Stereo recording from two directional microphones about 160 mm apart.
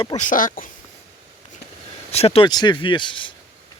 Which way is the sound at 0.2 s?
55° left (ahead or behind).